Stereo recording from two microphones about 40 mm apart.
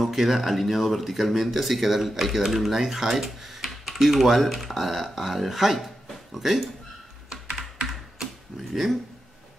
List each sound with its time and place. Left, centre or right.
0.0 s speech: centre
7.2 s computer keyboard: centre